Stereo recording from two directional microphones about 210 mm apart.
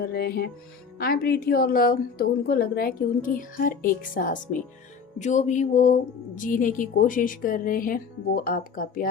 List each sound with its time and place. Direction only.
0.0 s a woman's voice: 45° left (ahead or behind)